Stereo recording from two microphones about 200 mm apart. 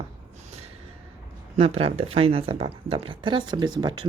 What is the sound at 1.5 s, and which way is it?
Speech, 30° right (ahead or behind).